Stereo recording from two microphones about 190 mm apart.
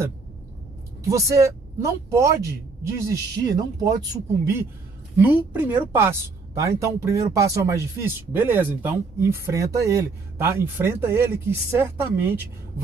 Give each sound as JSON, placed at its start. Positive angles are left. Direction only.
{"t": 1.0, "sound": "speech", "side_deg": -15}
{"t": 5.2, "sound": "speech", "side_deg": -10}